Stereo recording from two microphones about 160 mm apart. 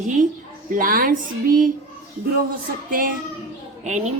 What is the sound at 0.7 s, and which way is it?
A woman's voice, 60° right (ahead or behind).